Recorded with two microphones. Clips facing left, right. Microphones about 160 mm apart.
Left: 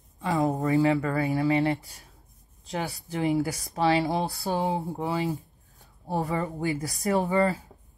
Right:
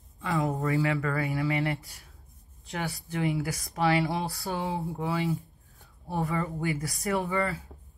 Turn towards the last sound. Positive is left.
turn(degrees=35)  # may be behind; listen again after turning